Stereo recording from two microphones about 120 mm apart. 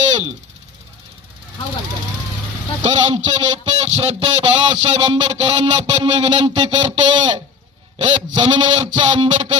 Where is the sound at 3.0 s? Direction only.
75° right (ahead or behind); by 8.9 s 45° right (ahead or behind).